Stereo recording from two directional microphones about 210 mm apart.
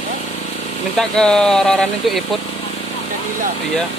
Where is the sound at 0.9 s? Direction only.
5° left (ahead or behind).